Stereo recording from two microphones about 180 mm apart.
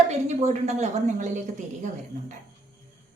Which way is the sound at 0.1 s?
40° right (ahead or behind).